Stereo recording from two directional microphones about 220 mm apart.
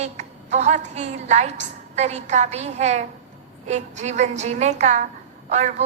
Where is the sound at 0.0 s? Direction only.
30° right (ahead or behind).